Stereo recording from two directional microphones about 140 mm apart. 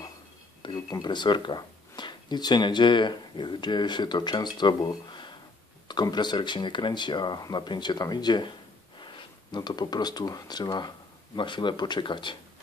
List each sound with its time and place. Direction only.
0.6 s speech: 30° left (ahead or behind)